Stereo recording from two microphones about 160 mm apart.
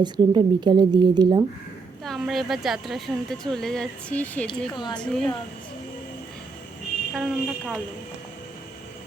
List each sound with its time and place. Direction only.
0.0 s a woman's voice: 30° right (ahead or behind)
2.0 s a woman's voice: centre (ahead or behind)
4.7 s speech: 30° left (ahead or behind)
4.9 s a woman's voice: 5° left (ahead or behind)
7.1 s a woman's voice: centre (ahead or behind)